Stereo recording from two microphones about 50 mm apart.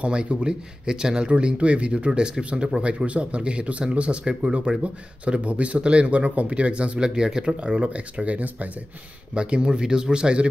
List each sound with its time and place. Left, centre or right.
0.0 s speech: right